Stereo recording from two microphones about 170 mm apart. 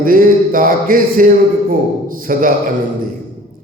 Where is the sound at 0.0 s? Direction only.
55° right (ahead or behind).